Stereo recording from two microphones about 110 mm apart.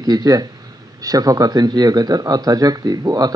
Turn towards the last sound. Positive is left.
turn(degrees=-35)  # may be behind; listen again after turning